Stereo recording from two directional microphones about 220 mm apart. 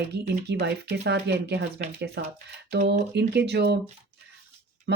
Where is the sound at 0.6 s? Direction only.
50° right (ahead or behind).